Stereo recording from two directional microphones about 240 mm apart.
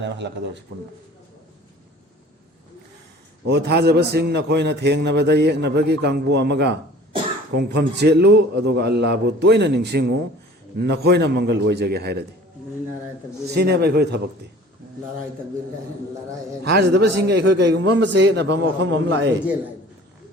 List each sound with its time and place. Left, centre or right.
0.0 s a man's voice: right
3.4 s a man's voice: right
13.5 s a man's voice: right
16.6 s a man's voice: right